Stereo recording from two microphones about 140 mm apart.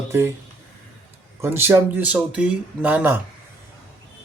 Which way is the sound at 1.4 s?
15° right (ahead or behind).